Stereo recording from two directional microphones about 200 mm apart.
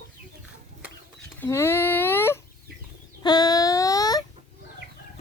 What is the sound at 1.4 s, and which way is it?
Speech, 10° left (ahead or behind).